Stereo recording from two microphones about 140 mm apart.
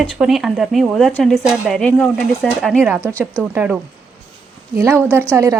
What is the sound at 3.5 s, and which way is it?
Speech, 10° right (ahead or behind).